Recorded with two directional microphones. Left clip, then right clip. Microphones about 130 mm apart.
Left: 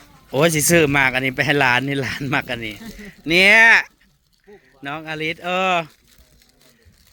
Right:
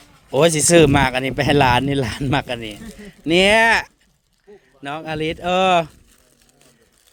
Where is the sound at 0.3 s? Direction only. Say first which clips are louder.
Right 2 dB; 45° right (ahead or behind).